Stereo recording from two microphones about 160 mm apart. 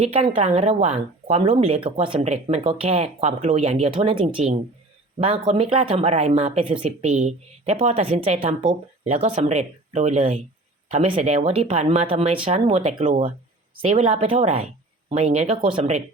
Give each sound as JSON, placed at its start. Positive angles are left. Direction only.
{"t": 0.0, "sound": "speech", "side_deg": -40}